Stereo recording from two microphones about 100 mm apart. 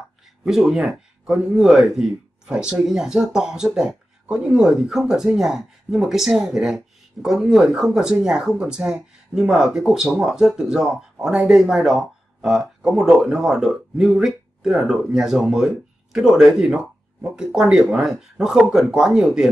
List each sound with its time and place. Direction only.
0.5 s speech: 5° right (ahead or behind)